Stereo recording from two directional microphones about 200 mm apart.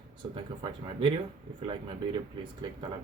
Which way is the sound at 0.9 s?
25° right (ahead or behind).